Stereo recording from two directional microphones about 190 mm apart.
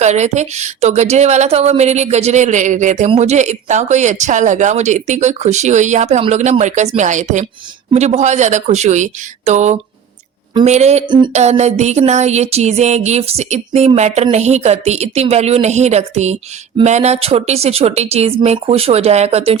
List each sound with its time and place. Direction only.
0.0 s music: 35° right (ahead or behind)